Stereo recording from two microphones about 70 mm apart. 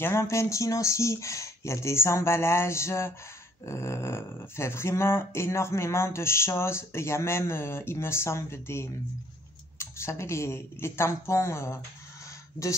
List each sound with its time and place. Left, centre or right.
0.0 s speech: left